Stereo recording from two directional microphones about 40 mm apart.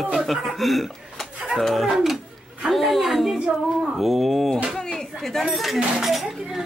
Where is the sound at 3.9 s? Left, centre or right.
Centre.